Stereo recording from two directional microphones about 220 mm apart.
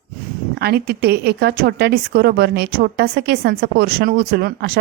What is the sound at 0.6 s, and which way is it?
A woman's voice, 45° right (ahead or behind).